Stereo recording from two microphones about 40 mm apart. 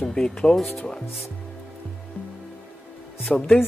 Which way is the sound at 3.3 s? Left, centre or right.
Centre.